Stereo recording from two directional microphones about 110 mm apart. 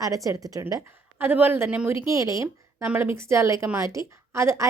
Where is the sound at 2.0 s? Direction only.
30° right (ahead or behind).